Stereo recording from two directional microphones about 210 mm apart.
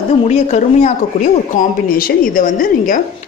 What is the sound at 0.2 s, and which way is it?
Speech, 35° left (ahead or behind).